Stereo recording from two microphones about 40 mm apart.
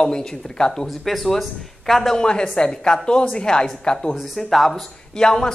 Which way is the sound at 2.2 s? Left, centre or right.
Centre.